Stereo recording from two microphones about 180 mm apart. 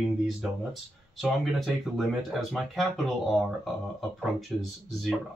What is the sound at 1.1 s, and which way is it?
Speech, centre (ahead or behind).